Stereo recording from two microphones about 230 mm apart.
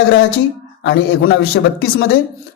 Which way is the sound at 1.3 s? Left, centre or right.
Left.